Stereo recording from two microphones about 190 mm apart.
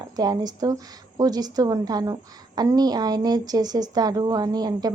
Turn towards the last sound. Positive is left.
turn(degrees=-20)  # may be behind; listen again after turning